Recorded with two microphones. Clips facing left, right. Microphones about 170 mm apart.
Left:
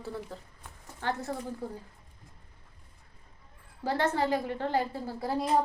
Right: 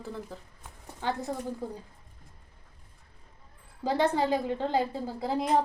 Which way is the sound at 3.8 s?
15° right (ahead or behind).